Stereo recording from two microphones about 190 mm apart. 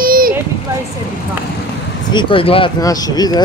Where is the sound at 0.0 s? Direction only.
50° right (ahead or behind).